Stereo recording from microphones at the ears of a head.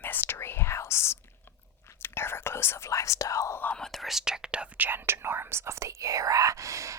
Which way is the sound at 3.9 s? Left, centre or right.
Centre.